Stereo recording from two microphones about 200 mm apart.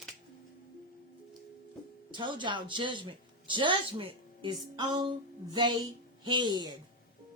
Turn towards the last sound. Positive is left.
turn(degrees=-20)  # may be behind; listen again after turning